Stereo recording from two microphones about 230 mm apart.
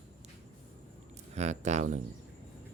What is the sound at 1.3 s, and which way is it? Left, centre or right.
Speech, right.